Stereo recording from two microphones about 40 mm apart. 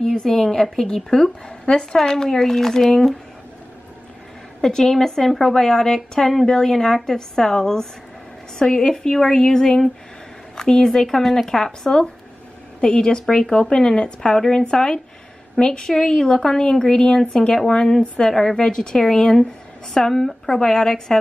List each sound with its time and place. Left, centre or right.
0.2 s speech: centre
4.6 s a woman's voice: centre